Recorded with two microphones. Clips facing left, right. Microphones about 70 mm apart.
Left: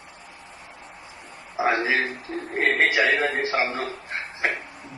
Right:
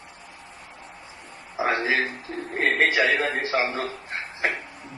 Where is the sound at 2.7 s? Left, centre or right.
Centre.